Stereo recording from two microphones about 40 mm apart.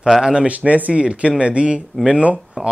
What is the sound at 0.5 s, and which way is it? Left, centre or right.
Speech, right.